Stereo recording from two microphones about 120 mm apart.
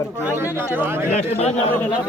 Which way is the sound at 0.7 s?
20° right (ahead or behind).